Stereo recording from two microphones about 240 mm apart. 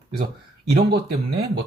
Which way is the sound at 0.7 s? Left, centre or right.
Right.